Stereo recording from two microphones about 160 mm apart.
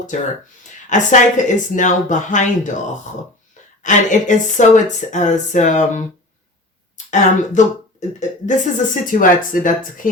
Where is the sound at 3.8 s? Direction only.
50° left (ahead or behind).